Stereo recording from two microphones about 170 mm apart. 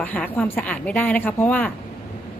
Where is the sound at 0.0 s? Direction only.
10° left (ahead or behind).